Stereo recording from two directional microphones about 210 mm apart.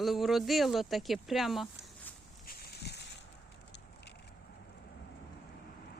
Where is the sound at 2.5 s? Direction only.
50° left (ahead or behind).